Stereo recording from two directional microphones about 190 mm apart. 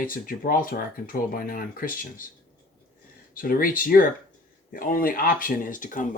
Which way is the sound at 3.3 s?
50° left (ahead or behind).